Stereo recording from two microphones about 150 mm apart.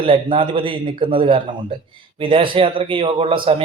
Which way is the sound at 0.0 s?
35° right (ahead or behind).